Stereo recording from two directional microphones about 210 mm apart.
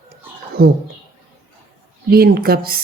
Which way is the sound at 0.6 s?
50° right (ahead or behind).